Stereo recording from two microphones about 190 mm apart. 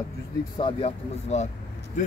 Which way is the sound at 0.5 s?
30° left (ahead or behind).